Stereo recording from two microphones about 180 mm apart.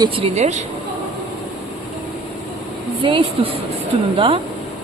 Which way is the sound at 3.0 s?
30° right (ahead or behind).